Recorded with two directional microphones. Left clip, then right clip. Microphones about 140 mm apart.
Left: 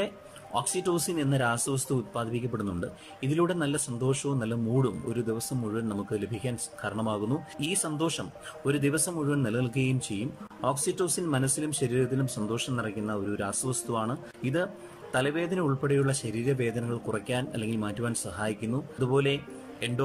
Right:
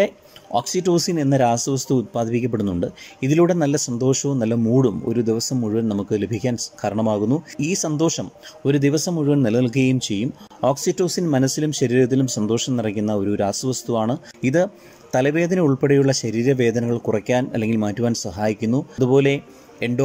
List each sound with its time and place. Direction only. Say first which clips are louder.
0.0 s speech: right 12 dB; 35° right (ahead or behind)